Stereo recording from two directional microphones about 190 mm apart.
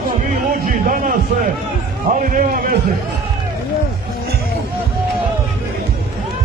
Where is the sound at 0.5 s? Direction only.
45° right (ahead or behind).